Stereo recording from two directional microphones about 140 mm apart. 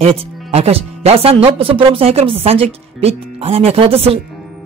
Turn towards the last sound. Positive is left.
turn(degrees=-45)  # may be behind; listen again after turning